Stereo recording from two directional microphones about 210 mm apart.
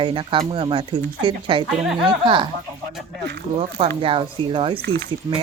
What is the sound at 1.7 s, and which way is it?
Speech, centre (ahead or behind).